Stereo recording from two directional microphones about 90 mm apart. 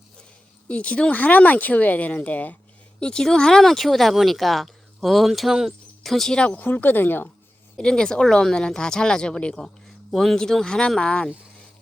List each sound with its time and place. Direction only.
0.7 s speech: 15° left (ahead or behind)
7.8 s speech: 10° left (ahead or behind)